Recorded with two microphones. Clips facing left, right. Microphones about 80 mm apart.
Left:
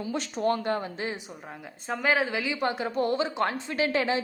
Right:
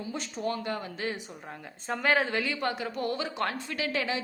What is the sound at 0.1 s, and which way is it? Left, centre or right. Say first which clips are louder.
Speech: left 5 dB; left.